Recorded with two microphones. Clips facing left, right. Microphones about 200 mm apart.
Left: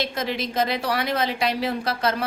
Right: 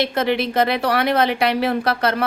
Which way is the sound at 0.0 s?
65° right (ahead or behind).